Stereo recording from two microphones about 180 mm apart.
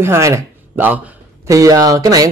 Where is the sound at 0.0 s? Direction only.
15° right (ahead or behind).